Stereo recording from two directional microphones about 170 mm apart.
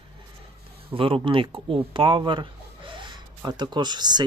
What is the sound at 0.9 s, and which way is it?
Speech, 30° right (ahead or behind).